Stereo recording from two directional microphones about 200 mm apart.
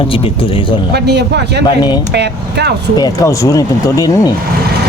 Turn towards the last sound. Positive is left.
turn(degrees=15)  # may be behind; listen again after turning